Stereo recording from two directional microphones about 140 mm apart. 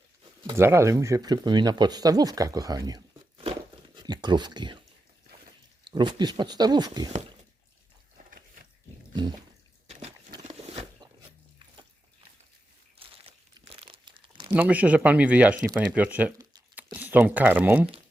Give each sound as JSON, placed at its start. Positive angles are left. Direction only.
{"t": 0.5, "sound": "speech", "side_deg": -20}
{"t": 5.8, "sound": "speech", "side_deg": -30}
{"t": 9.8, "sound": "a sound", "side_deg": -50}
{"t": 10.4, "sound": "wild animals", "side_deg": -45}
{"t": 13.0, "sound": "crumpling", "side_deg": -40}
{"t": 14.5, "sound": "speech", "side_deg": -10}